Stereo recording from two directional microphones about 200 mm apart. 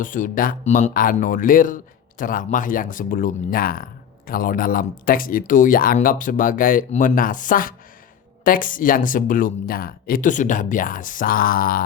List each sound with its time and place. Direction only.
0.0 s speech: 40° left (ahead or behind)